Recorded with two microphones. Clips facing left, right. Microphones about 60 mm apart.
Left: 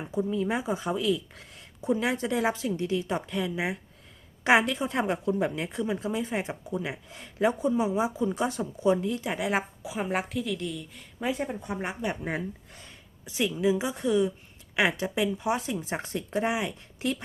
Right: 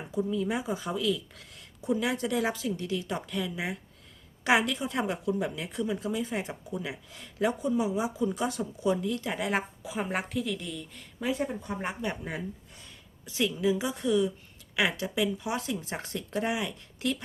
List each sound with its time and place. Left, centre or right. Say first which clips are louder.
0.1 s a woman's voice: left 1 dB; left
9.2 s speech: left 2 dB; centre
9.5 s a woman's voice: left 2 dB; centre
11.2 s speech: even; left